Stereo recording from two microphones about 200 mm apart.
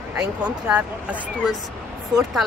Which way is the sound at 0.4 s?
5° right (ahead or behind).